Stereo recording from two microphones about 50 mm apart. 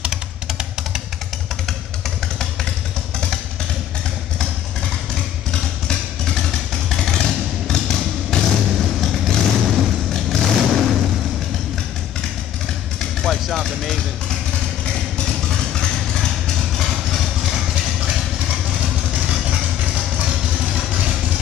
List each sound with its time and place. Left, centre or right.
0.0 s music: centre
5.5 s vehicle: centre
13.0 s vehicle: centre
14.9 s vehicle: centre
18.8 s vehicle: right